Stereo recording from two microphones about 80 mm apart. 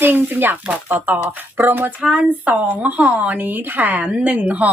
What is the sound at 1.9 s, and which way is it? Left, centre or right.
Speech, centre.